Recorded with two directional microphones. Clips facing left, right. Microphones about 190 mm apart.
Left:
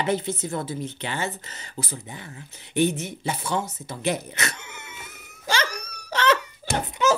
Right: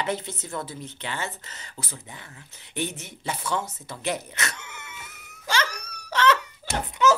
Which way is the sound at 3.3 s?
25° left (ahead or behind).